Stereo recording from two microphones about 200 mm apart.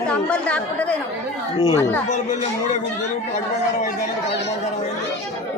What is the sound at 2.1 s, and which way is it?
Speech, 35° left (ahead or behind).